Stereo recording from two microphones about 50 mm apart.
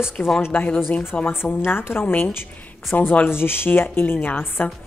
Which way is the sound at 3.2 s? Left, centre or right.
Left.